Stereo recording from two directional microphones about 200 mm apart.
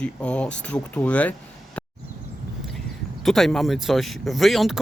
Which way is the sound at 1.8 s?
5° left (ahead or behind).